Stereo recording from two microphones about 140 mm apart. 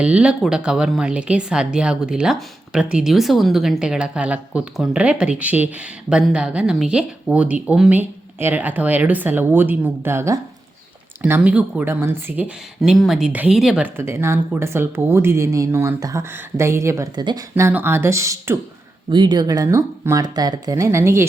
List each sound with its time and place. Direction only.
0.0 s speech: 10° right (ahead or behind)
13.8 s speech: 15° right (ahead or behind)
19.1 s speech: 30° right (ahead or behind)